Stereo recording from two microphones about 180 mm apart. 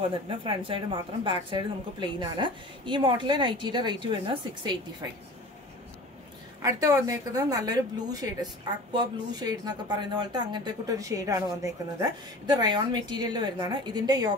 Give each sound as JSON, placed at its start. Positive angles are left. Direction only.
{"t": 0.1, "sound": "speech", "side_deg": -30}
{"t": 6.8, "sound": "speech", "side_deg": -15}